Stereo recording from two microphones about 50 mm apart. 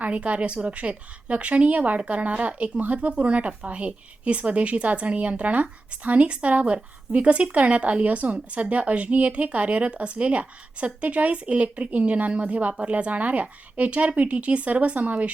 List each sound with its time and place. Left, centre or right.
0.0 s a woman's voice: right